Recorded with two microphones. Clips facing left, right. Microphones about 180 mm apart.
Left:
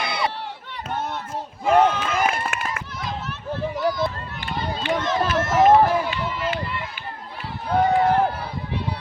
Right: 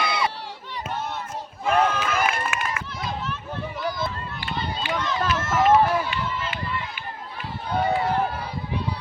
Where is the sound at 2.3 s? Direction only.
45° left (ahead or behind).